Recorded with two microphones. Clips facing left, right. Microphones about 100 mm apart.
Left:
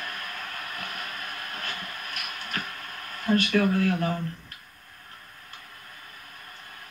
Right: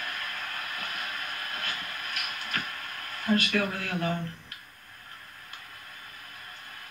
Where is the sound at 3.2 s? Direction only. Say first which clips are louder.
Left 4 dB; 35° left (ahead or behind).